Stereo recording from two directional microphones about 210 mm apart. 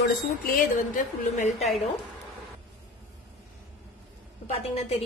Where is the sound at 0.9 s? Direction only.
35° left (ahead or behind).